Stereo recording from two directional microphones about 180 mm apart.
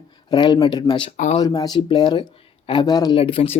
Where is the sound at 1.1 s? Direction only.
40° left (ahead or behind).